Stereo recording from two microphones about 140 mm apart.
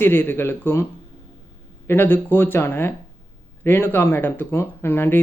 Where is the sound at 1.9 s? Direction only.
15° left (ahead or behind).